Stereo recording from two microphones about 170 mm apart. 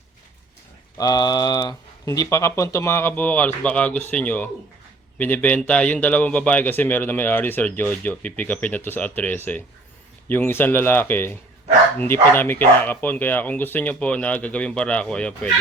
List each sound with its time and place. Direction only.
0.9 s speech: 20° left (ahead or behind); by 15.4 s 5° left (ahead or behind)